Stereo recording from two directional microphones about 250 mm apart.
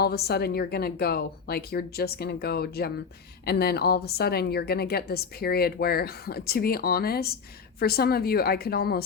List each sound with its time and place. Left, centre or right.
0.0 s a woman's voice: left